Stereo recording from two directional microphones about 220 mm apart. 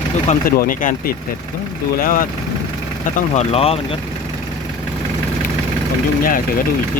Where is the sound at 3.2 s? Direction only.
30° left (ahead or behind).